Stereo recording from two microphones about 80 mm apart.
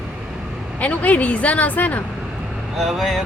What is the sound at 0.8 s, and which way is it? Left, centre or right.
Speech, centre.